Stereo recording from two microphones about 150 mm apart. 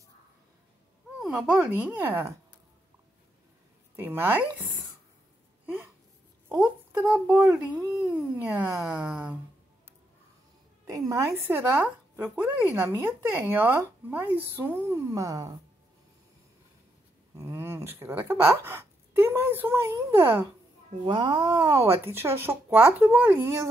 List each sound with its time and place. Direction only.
1.2 s speech: centre (ahead or behind)
3.9 s speech: 15° right (ahead or behind)
6.5 s speech: 10° right (ahead or behind)
10.9 s speech: 20° right (ahead or behind)
15.0 s speech: 25° right (ahead or behind)
17.4 s speech: 20° right (ahead or behind)
21.0 s speech: 30° right (ahead or behind)